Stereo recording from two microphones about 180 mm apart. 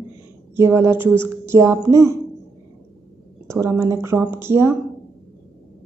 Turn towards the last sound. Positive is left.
turn(degrees=-15)  # may be behind; listen again after turning